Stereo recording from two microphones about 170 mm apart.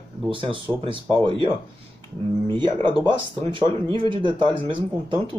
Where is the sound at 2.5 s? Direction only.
30° right (ahead or behind).